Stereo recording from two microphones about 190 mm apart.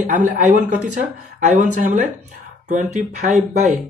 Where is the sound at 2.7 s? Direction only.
40° right (ahead or behind).